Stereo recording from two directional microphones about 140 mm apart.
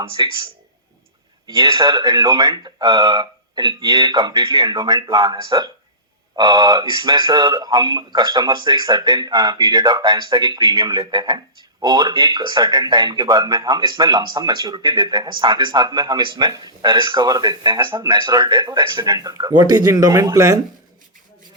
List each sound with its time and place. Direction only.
0.2 s speech: 30° right (ahead or behind)
1.5 s speech: 35° right (ahead or behind)